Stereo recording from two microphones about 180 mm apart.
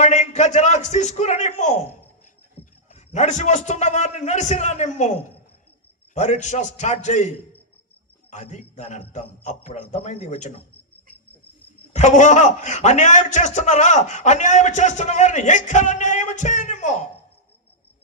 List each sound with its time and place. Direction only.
0.0 s a man's voice: 40° left (ahead or behind)
2.9 s a man's voice: 40° left (ahead or behind)
8.3 s a man's voice: 40° left (ahead or behind)
11.9 s a man's voice: 40° left (ahead or behind)